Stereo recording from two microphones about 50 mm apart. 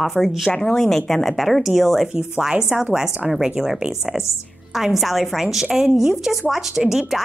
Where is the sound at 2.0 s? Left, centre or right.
Right.